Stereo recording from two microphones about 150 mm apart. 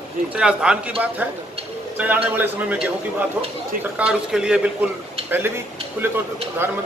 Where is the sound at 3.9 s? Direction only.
5° right (ahead or behind).